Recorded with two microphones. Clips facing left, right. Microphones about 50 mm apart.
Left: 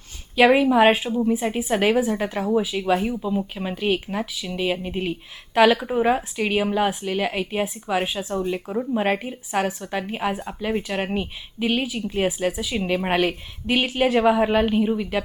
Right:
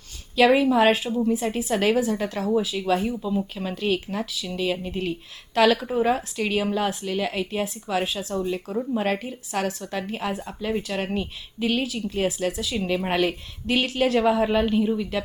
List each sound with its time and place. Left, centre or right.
0.3 s a woman's voice: left